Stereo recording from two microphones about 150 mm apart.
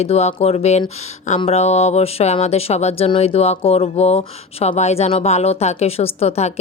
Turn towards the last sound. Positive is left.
turn(degrees=45)  # may be behind; listen again after turning